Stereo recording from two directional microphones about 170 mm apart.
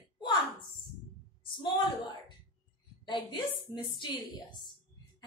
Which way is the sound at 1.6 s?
25° left (ahead or behind).